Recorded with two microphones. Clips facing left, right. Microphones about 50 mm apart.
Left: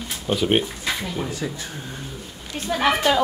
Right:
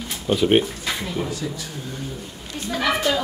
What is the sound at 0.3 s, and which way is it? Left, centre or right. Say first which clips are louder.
Speech: right 3 dB; centre.